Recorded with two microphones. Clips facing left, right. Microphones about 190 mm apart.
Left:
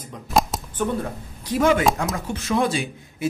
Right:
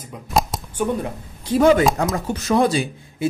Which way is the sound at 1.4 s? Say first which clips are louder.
Right 4 dB; 30° right (ahead or behind).